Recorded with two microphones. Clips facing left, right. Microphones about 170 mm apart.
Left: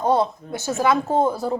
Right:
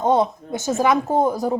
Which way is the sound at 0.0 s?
20° right (ahead or behind).